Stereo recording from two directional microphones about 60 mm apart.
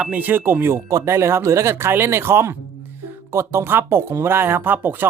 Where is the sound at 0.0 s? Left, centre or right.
Right.